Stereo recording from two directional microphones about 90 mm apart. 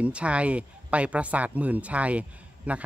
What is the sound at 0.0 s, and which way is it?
Speech, 15° right (ahead or behind).